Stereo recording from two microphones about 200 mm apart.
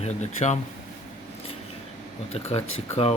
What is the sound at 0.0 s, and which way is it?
Speech, 35° left (ahead or behind).